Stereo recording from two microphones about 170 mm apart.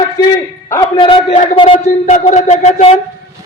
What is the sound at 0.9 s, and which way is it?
A man's voice, 30° left (ahead or behind).